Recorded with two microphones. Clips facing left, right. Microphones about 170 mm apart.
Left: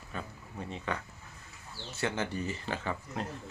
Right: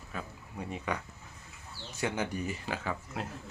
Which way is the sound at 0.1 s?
10° right (ahead or behind).